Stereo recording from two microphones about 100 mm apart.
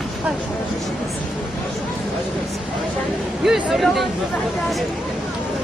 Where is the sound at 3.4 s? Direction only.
5° right (ahead or behind).